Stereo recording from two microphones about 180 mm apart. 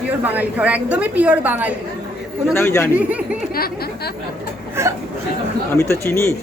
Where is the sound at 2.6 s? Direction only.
15° left (ahead or behind).